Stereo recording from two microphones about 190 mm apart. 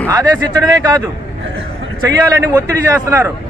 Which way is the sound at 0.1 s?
20° right (ahead or behind).